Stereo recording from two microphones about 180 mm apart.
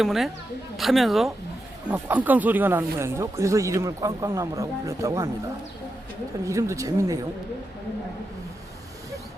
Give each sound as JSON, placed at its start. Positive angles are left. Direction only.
{"t": 0.0, "sound": "speech", "side_deg": 0}
{"t": 6.4, "sound": "speech", "side_deg": -15}